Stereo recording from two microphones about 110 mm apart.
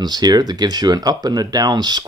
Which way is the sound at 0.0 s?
40° right (ahead or behind).